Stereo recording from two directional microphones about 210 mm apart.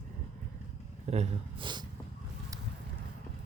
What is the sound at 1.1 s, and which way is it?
Speech, 30° right (ahead or behind).